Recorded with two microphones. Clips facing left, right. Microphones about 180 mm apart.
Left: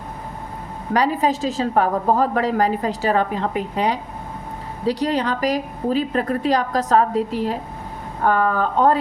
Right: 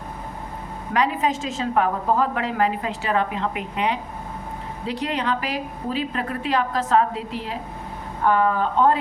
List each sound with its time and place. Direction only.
0.9 s a woman's voice: 35° left (ahead or behind)